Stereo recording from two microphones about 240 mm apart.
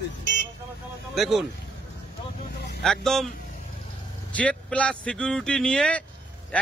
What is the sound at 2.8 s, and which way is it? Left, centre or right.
Speech, centre.